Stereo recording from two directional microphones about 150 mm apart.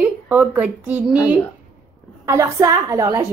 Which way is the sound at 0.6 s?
10° right (ahead or behind).